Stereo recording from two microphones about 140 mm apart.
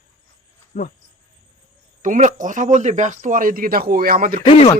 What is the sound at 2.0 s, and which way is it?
Speech, 65° right (ahead or behind).